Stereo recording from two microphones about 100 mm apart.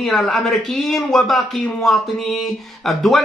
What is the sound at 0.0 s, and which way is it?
Speech, centre (ahead or behind).